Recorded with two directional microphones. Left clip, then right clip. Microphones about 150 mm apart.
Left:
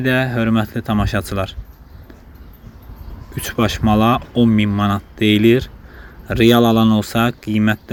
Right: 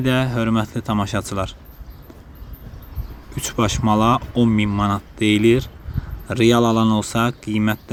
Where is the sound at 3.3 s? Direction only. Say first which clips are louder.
Left 2 dB; 10° right (ahead or behind).